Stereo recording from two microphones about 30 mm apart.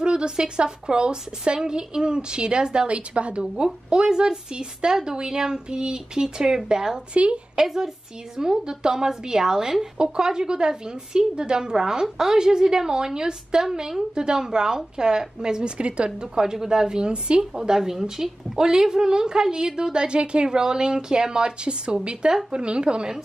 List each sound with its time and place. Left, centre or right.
0.0 s a woman's voice: right
2.9 s a woman's voice: right
3.9 s a woman's voice: right; by 14.0 s centre
14.1 s a woman's voice: right
15.8 s a woman's voice: right
16.5 s a woman's voice: right